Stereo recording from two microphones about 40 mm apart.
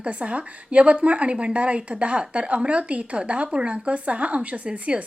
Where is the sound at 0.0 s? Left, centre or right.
Right.